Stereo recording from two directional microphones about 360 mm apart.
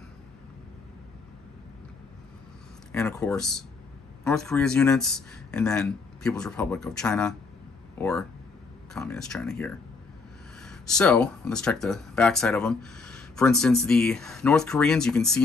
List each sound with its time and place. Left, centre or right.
2.9 s speech: centre